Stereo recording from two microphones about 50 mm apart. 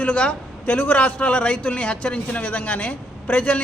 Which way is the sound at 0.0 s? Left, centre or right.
Left.